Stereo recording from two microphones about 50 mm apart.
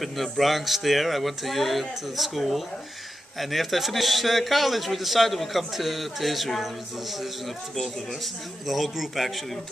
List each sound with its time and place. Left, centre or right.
0.0 s a man's voice: centre